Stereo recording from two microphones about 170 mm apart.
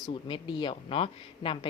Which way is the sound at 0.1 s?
30° left (ahead or behind).